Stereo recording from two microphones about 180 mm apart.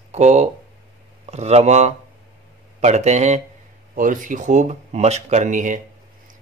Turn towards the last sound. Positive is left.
turn(degrees=-45)  # may be behind; listen again after turning